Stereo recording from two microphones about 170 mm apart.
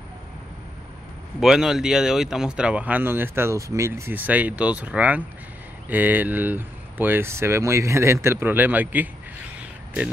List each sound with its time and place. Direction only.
1.4 s speech: 5° right (ahead or behind)